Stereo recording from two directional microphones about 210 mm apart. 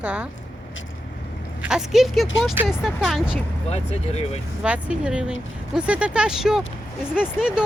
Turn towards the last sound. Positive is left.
turn(degrees=-5)  # may be behind; listen again after turning